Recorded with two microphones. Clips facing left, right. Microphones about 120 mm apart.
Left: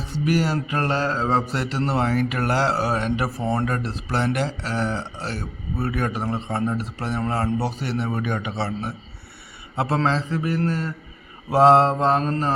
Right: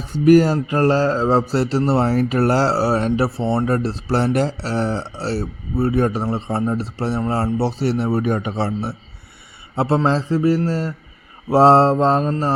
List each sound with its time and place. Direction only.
0.1 s a man's voice: 45° right (ahead or behind); by 12.2 s 25° right (ahead or behind)